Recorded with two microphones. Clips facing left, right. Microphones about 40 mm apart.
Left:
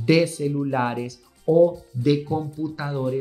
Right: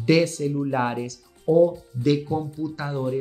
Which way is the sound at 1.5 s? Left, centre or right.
Centre.